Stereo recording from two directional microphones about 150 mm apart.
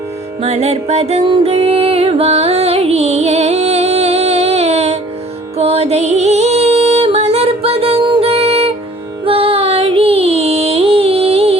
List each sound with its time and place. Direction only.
0.4 s music: 45° right (ahead or behind)